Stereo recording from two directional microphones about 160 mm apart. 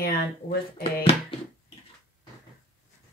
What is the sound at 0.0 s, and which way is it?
Speech, 70° left (ahead or behind).